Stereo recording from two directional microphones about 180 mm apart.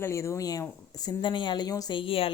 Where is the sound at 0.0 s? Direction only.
15° left (ahead or behind).